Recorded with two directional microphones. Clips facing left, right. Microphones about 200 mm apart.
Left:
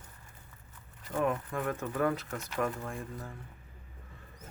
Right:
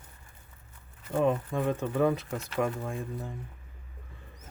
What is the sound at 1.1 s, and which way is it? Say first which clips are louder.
Speech: right 5 dB; 25° right (ahead or behind).